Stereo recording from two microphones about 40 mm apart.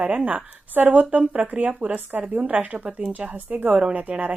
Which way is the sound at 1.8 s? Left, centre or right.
Right.